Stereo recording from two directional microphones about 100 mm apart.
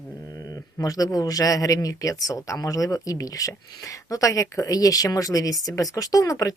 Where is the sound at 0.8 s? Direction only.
40° left (ahead or behind).